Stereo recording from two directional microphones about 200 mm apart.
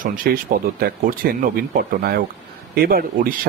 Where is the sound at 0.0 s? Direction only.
45° right (ahead or behind).